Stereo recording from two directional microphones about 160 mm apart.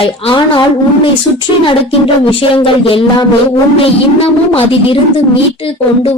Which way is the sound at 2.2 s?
35° left (ahead or behind).